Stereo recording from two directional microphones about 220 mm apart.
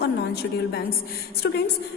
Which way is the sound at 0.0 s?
50° left (ahead or behind).